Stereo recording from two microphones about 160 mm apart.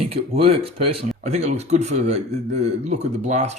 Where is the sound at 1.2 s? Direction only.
45° right (ahead or behind).